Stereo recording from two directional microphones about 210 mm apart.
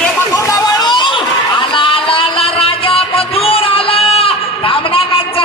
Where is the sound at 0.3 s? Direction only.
15° left (ahead or behind).